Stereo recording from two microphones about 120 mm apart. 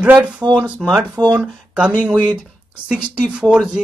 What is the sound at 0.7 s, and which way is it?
Speech, centre (ahead or behind).